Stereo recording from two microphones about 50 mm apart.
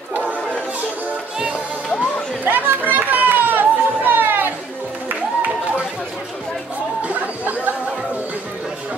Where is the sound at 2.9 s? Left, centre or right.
Right.